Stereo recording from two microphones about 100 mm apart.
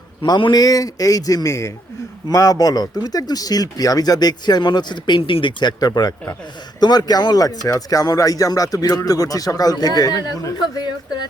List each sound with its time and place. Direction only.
0.2 s speech: 55° left (ahead or behind)
0.5 s speech: 40° left (ahead or behind)